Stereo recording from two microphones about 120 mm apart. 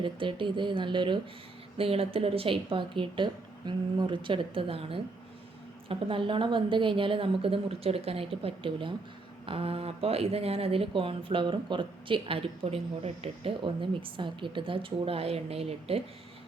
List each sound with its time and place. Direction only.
0.0 s speech: 45° right (ahead or behind)
1.8 s speech: 50° right (ahead or behind)